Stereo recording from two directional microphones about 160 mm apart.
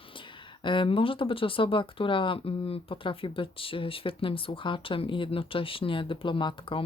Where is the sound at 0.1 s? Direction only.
30° left (ahead or behind).